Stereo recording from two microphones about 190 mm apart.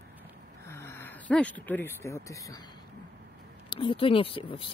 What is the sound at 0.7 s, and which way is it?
Speech, 15° left (ahead or behind).